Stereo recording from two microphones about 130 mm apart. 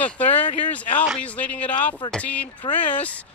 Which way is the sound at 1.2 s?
10° left (ahead or behind).